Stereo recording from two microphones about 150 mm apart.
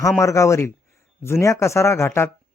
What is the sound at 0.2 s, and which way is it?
Speech, 20° left (ahead or behind).